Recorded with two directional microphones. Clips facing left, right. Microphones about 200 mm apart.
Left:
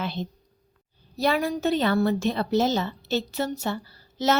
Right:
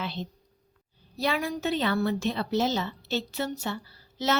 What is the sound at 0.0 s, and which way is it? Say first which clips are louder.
A woman's voice: left 4 dB; 45° left (ahead or behind).